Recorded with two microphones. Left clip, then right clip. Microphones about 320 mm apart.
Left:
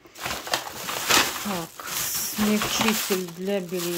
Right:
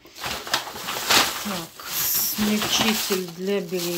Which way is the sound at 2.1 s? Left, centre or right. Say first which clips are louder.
Even; centre.